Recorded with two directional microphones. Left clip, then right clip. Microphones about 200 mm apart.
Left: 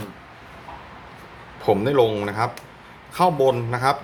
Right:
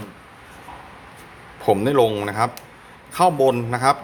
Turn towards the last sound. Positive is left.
turn(degrees=-20)  # may be behind; listen again after turning